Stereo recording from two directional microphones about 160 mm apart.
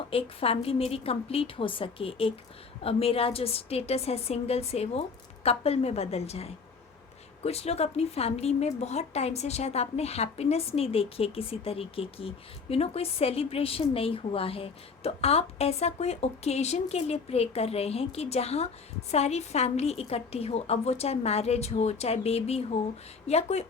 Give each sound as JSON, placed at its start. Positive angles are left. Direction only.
{"t": 0.1, "sound": "a woman's voice", "side_deg": 35}